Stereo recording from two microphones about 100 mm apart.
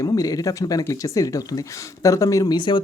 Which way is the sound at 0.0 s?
35° left (ahead or behind).